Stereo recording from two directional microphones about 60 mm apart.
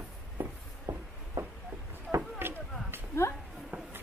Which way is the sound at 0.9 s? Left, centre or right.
Right.